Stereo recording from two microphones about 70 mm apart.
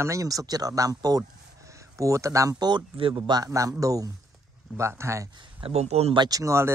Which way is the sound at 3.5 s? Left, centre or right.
Right.